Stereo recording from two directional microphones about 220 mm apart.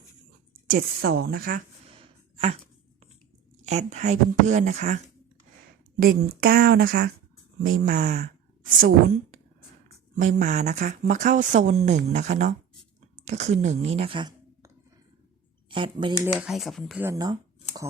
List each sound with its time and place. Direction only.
0.7 s speech: 40° right (ahead or behind)
3.7 s speech: 30° right (ahead or behind)
6.0 s speech: 40° right (ahead or behind)
10.2 s speech: 35° right (ahead or behind)
15.7 s speech: 20° right (ahead or behind)
16.2 s speech: 5° right (ahead or behind)
17.1 s speech: 15° right (ahead or behind)